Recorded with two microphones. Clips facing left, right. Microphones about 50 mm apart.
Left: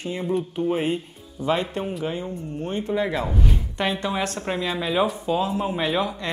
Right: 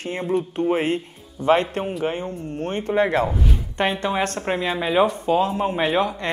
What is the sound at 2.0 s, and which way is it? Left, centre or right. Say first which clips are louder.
Speech: right 3 dB; right.